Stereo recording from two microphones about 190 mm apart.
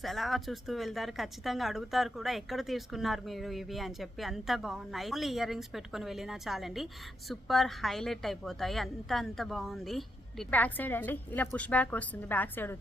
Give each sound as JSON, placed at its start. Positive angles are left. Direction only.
{"t": 0.0, "sound": "speech", "side_deg": 0}